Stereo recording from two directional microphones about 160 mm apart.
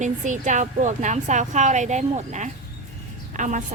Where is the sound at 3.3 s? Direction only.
50° right (ahead or behind).